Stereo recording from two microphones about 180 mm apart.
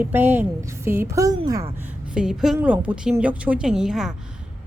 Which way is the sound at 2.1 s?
5° right (ahead or behind).